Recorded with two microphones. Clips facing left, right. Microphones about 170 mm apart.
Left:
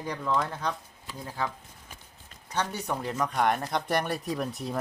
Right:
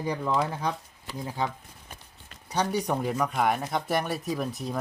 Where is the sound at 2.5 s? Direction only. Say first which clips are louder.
Right 4 dB; 15° right (ahead or behind).